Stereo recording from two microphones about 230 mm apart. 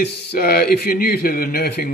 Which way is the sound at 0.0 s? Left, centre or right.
Left.